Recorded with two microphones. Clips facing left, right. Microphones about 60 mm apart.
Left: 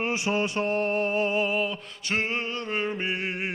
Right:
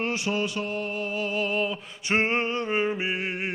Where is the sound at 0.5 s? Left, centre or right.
Left.